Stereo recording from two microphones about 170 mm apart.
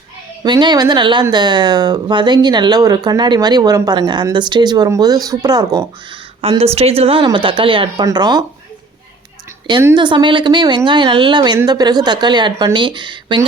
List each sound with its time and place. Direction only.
0.4 s speech: 25° right (ahead or behind)
6.4 s speech: 35° right (ahead or behind)
9.8 s speech: 25° right (ahead or behind)